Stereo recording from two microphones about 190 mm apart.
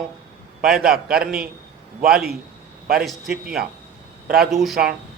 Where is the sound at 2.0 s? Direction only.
5° right (ahead or behind).